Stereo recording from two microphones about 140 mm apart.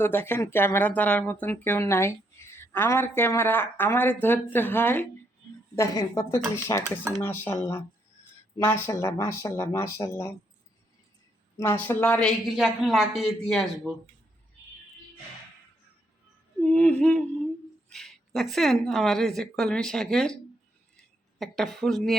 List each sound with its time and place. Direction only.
0.0 s speech: 15° left (ahead or behind)
11.5 s speech: 20° left (ahead or behind); by 13.9 s centre (ahead or behind)
16.6 s a sound: 10° left (ahead or behind)
17.9 s speech: centre (ahead or behind)